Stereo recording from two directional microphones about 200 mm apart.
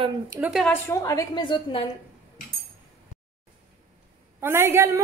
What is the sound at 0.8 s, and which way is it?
A woman's voice, 15° left (ahead or behind).